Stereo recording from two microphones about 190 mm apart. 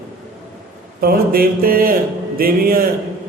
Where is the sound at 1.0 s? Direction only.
50° right (ahead or behind).